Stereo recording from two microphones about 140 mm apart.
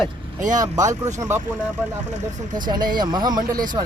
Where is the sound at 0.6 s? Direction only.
25° right (ahead or behind).